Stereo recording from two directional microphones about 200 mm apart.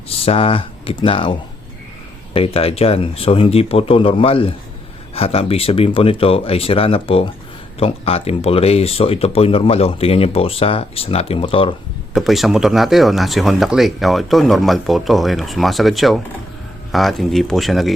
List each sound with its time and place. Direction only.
0.2 s speech: 30° left (ahead or behind)
12.1 s speech: centre (ahead or behind)